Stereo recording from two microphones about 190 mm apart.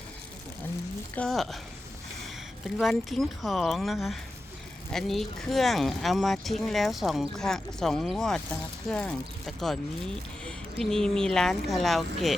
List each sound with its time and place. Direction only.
1.1 s a woman's voice: 5° left (ahead or behind)